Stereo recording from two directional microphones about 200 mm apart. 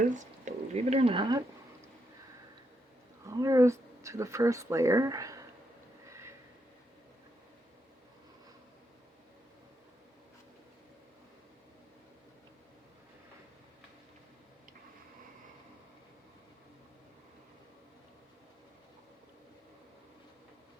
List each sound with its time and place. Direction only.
0.1 s speech: 35° right (ahead or behind); by 1.5 s 20° right (ahead or behind)
3.2 s speech: 15° right (ahead or behind)